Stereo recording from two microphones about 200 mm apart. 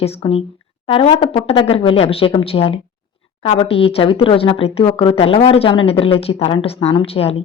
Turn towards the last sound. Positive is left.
turn(degrees=30)  # may be behind; listen again after turning